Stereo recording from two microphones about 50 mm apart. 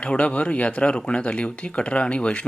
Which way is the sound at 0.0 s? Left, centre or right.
Left.